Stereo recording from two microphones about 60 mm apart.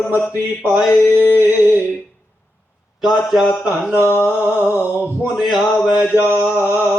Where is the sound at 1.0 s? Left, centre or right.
Left.